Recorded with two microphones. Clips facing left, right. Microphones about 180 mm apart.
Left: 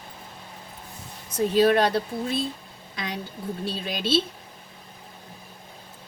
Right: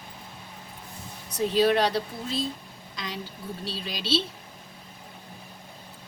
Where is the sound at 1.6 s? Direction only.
50° left (ahead or behind).